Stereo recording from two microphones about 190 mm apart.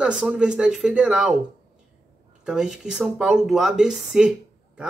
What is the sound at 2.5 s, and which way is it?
Speech, 5° right (ahead or behind).